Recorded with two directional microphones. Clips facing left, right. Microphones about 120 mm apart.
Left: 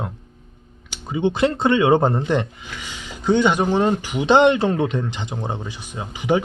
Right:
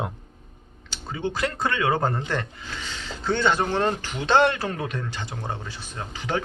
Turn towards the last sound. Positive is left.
turn(degrees=15)  # may be behind; listen again after turning